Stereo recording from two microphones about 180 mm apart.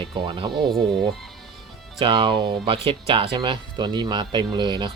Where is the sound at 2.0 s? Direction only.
30° right (ahead or behind).